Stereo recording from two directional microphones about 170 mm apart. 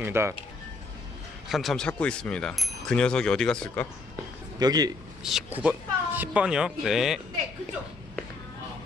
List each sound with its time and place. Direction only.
0.0 s speech: 15° right (ahead or behind)
1.5 s speech: centre (ahead or behind)
4.6 s speech: 25° right (ahead or behind)
5.2 s speech: 5° right (ahead or behind)